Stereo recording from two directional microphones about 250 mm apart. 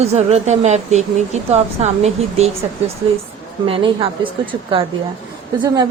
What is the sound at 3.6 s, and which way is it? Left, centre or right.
A woman's voice, right.